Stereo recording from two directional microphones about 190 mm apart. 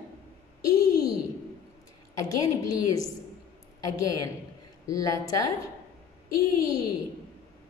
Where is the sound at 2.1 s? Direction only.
20° left (ahead or behind).